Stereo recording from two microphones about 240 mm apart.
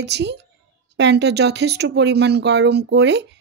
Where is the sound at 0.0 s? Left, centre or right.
Right.